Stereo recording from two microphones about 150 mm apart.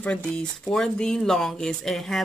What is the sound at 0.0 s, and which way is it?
Speech, 10° left (ahead or behind).